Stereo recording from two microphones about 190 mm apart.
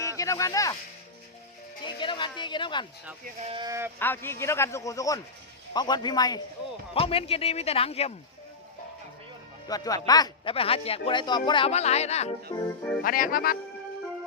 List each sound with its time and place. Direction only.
0.0 s speech: 15° left (ahead or behind)
1.8 s speech: 25° left (ahead or behind)
3.5 s speech: 20° right (ahead or behind)
4.0 s a man's voice: 10° left (ahead or behind); by 8.1 s 30° left (ahead or behind)
9.6 s speech: 20° left (ahead or behind); by 12.5 s 35° left (ahead or behind)
13.0 s music: 50° left (ahead or behind)